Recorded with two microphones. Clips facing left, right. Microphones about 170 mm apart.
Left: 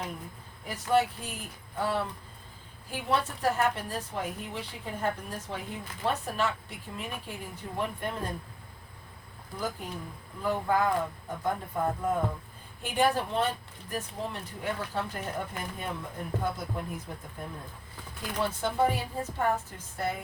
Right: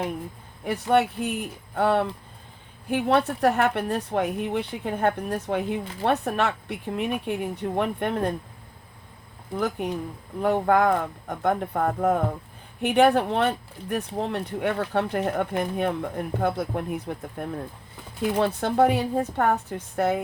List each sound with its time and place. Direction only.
0.6 s speech: 65° right (ahead or behind)
9.6 s speech: 65° right (ahead or behind)
18.3 s speech: 65° right (ahead or behind)